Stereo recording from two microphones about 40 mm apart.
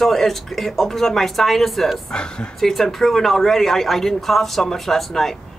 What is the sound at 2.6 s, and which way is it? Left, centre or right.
Speech, centre.